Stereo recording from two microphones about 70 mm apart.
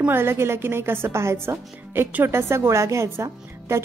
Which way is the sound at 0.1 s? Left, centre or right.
Right.